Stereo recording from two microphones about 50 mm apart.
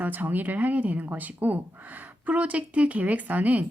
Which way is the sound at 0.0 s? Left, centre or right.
Right.